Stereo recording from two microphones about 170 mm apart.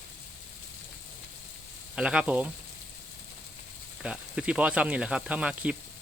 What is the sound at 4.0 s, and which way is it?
Speech, 5° right (ahead or behind).